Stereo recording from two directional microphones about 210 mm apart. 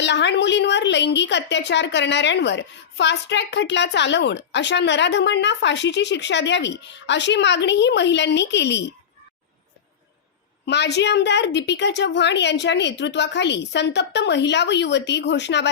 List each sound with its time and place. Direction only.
0.0 s a woman's voice: 55° left (ahead or behind)
10.7 s a woman's voice: 55° left (ahead or behind)